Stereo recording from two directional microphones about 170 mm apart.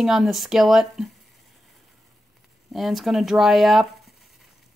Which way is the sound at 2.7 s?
Centre (ahead or behind).